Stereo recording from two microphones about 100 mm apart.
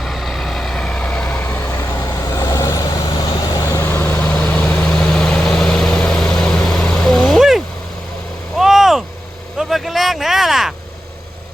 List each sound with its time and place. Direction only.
0.0 s vehicle: centre (ahead or behind); by 4.3 s 20° left (ahead or behind)
4.3 s vehicle: 10° left (ahead or behind)
8.5 s a sound: 5° right (ahead or behind)
9.6 s vehicle: centre (ahead or behind)